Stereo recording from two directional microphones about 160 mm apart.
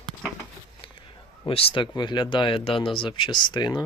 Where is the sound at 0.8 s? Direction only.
35° left (ahead or behind).